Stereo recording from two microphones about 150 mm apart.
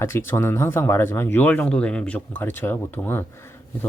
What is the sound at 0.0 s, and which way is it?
Speech, 15° left (ahead or behind).